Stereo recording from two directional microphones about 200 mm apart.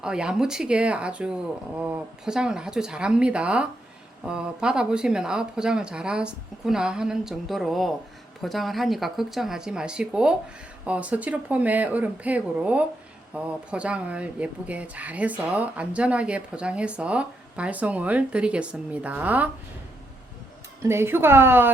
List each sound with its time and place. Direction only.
0.0 s speech: 5° right (ahead or behind)
20.8 s speech: 10° right (ahead or behind)